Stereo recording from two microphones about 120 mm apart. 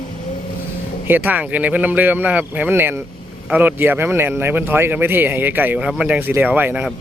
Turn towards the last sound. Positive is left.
turn(degrees=-15)  # may be behind; listen again after turning